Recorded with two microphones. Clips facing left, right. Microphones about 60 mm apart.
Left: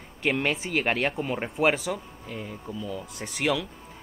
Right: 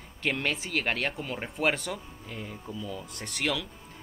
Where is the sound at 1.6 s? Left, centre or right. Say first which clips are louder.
Left 4 dB; centre.